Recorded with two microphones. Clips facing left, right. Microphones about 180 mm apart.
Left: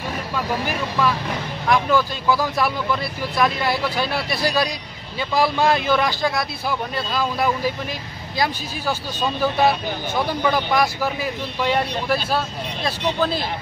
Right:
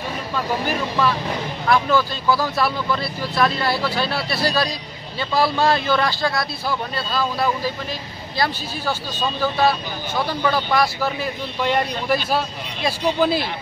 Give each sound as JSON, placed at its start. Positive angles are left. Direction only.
{"t": 1.7, "sound": "speech", "side_deg": 15}
{"t": 9.4, "sound": "speech", "side_deg": 20}
{"t": 11.6, "sound": "speech", "side_deg": 0}